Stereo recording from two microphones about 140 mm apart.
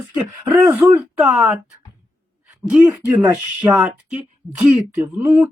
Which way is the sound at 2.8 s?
10° right (ahead or behind).